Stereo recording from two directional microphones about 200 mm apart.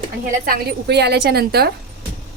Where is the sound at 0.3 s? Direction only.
45° right (ahead or behind).